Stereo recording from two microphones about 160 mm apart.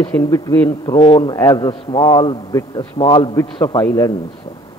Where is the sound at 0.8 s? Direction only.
25° left (ahead or behind).